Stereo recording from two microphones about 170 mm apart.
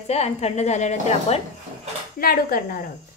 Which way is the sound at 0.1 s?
40° left (ahead or behind).